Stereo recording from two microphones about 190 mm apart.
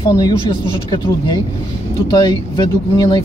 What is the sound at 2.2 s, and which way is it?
Speech, 20° left (ahead or behind).